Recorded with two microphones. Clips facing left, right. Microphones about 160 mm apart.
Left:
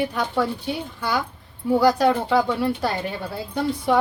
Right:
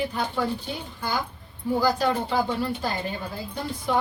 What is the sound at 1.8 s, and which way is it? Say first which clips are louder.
Speech: left 5 dB; 75° left (ahead or behind).